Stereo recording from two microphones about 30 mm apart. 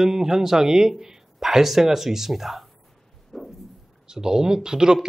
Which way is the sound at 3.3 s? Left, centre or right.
Centre.